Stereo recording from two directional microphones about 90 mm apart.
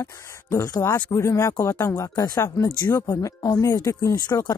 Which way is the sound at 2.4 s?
30° left (ahead or behind).